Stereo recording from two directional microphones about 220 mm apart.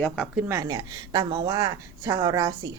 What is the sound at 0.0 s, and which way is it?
Speech, 5° right (ahead or behind).